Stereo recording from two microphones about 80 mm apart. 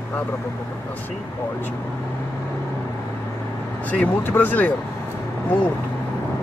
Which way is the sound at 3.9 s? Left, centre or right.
Left.